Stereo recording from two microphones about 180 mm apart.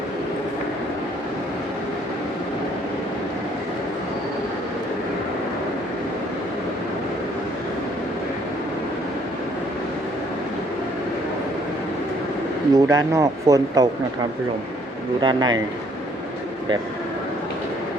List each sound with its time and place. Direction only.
12.7 s speech: 20° right (ahead or behind)
15.2 s speech: 25° right (ahead or behind)